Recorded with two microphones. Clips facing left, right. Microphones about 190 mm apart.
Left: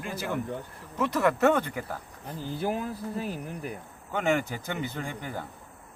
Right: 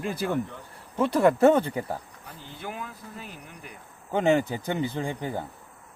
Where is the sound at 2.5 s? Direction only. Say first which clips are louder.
Left 7 dB; 35° left (ahead or behind).